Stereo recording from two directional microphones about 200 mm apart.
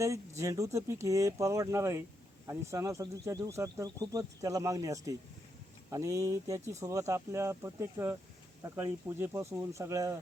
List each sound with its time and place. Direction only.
0.0 s speech: 15° right (ahead or behind)